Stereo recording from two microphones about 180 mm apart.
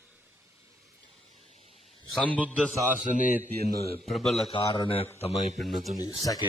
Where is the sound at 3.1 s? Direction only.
45° left (ahead or behind).